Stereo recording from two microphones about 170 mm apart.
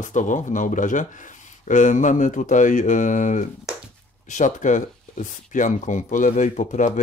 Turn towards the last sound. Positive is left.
turn(degrees=45)  # may be behind; listen again after turning